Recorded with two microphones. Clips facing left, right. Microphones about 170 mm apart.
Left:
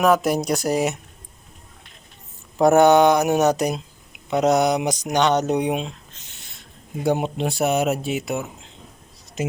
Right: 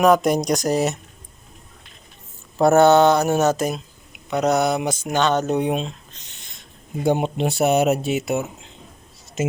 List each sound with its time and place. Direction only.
0.0 s speech: 5° left (ahead or behind)
2.6 s speech: 15° left (ahead or behind)
6.1 s a sound: 5° left (ahead or behind)
7.0 s speech: centre (ahead or behind)